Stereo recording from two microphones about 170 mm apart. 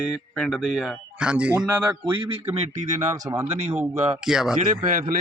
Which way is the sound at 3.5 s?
40° right (ahead or behind).